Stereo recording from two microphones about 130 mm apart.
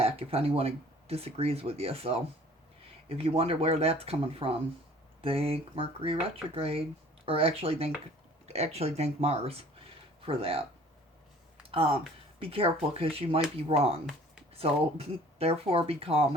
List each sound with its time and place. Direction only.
0.0 s speech: 50° right (ahead or behind)
11.7 s speech: 45° right (ahead or behind)